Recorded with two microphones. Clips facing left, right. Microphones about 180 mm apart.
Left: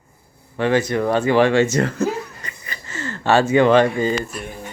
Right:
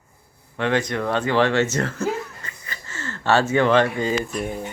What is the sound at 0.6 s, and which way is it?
Speech, 5° left (ahead or behind).